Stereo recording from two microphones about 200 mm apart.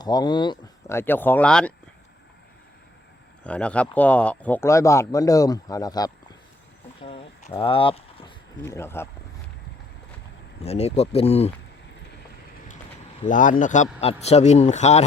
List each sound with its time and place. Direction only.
0.0 s speech: 20° left (ahead or behind)
3.4 s speech: 5° left (ahead or behind)
7.0 s a sound: 25° left (ahead or behind)
8.6 s speech: 15° left (ahead or behind)
10.6 s speech: 30° left (ahead or behind)
13.2 s speech: 40° left (ahead or behind)